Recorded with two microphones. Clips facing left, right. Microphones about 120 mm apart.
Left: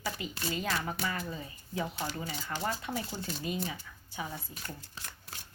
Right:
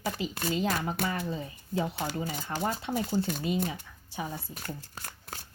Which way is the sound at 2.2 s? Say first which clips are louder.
Right 3 dB; 45° right (ahead or behind).